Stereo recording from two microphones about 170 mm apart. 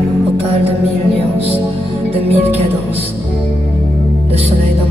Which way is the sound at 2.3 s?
35° right (ahead or behind).